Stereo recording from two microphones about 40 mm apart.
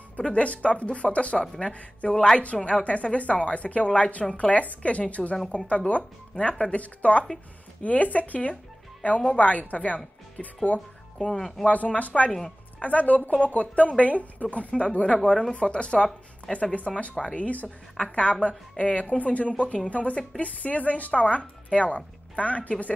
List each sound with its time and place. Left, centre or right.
0.2 s speech: left
11.2 s speech: centre
11.6 s speech: left
12.3 s speech: centre
12.7 s speech: left
17.6 s speech: left